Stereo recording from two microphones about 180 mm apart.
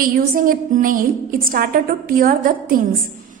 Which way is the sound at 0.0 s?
50° right (ahead or behind).